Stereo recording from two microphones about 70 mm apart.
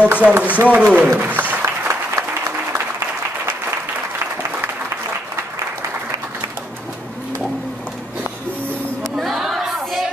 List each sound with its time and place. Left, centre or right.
0.0 s a man's voice: right
1.5 s applause: right
4.4 s applause: right
9.1 s crowd: centre